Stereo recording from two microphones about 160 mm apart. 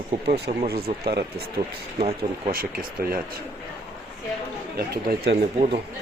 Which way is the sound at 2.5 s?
65° right (ahead or behind).